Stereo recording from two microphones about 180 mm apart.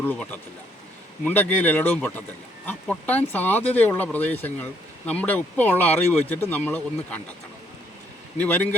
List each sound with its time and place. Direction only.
0.0 s speech: 10° left (ahead or behind)
8.4 s speech: 10° left (ahead or behind)